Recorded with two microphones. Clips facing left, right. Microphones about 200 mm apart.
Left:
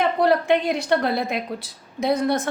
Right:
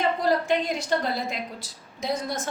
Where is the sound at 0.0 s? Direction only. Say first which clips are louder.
Left 4 dB; 65° left (ahead or behind).